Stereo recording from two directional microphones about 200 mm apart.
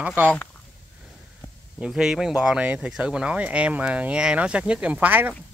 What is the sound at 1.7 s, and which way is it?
Speech, 5° right (ahead or behind).